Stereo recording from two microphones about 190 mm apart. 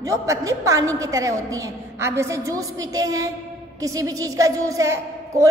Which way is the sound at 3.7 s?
20° right (ahead or behind).